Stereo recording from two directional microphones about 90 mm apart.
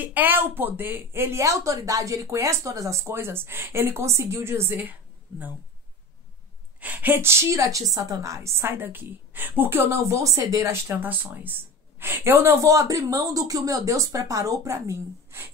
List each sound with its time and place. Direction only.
0.0 s speech: 20° right (ahead or behind)
6.8 s a woman's voice: 20° right (ahead or behind)